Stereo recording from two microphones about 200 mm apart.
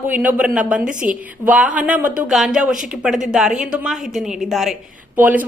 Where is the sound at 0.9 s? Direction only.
40° right (ahead or behind).